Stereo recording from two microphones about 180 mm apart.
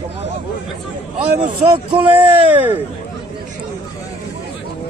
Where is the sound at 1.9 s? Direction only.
10° right (ahead or behind).